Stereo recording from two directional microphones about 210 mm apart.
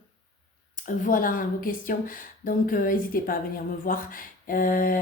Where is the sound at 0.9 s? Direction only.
40° left (ahead or behind).